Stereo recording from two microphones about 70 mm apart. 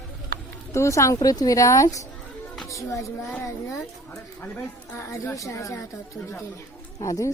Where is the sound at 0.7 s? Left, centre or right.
Left.